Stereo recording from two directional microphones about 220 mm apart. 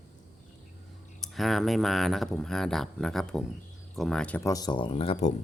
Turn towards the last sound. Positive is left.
turn(degrees=25)  # may be behind; listen again after turning